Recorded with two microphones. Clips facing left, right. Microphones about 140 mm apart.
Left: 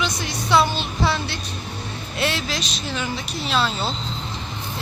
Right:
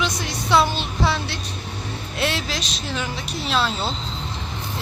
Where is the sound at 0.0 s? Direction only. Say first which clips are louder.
Even; centre (ahead or behind).